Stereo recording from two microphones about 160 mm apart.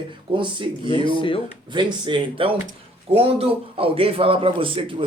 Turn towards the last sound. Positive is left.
turn(degrees=-35)  # may be behind; listen again after turning